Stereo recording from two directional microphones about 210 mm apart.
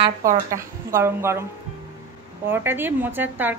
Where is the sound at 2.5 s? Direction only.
10° right (ahead or behind).